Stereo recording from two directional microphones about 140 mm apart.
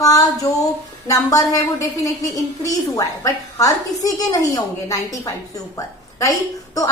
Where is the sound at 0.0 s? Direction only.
25° left (ahead or behind).